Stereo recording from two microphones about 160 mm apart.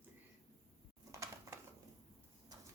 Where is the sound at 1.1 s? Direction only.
20° right (ahead or behind).